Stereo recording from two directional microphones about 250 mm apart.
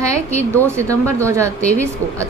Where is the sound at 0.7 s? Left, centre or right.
Centre.